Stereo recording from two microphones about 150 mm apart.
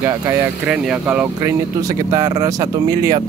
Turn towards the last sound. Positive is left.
turn(degrees=-25)  # may be behind; listen again after turning